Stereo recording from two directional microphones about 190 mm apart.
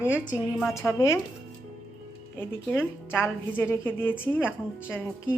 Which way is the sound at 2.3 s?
10° left (ahead or behind).